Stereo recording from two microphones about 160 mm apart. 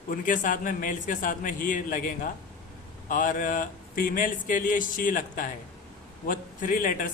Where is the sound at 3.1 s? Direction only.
55° left (ahead or behind).